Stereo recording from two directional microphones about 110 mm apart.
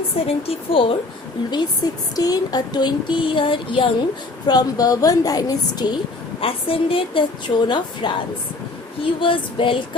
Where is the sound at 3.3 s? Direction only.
50° left (ahead or behind).